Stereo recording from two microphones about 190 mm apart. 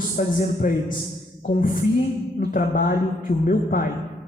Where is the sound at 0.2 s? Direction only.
45° left (ahead or behind).